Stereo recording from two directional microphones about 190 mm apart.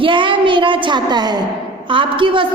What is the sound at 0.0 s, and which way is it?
A woman's voice, 25° right (ahead or behind).